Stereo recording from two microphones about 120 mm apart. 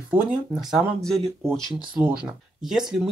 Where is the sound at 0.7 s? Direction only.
5° left (ahead or behind).